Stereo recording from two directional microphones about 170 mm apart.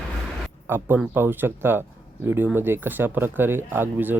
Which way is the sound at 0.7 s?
10° right (ahead or behind).